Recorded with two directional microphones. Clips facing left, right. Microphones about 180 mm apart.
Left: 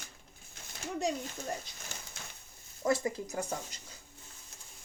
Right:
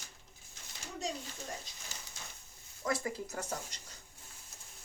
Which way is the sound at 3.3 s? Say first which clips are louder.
Left 4 dB; 10° left (ahead or behind).